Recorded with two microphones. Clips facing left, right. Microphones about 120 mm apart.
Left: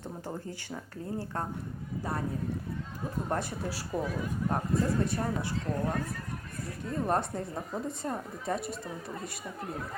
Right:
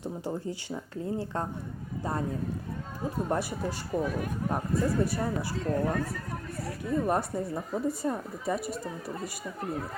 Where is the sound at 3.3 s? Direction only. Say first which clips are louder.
Right 2 dB; 10° right (ahead or behind).